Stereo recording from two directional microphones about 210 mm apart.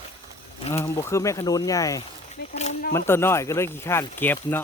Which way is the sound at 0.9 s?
10° left (ahead or behind).